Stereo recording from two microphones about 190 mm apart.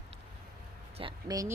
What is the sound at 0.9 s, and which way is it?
Speech, 25° right (ahead or behind).